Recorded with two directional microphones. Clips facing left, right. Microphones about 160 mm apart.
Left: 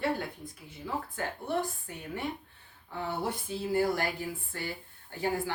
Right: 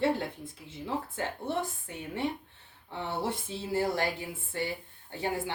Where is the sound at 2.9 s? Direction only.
25° right (ahead or behind).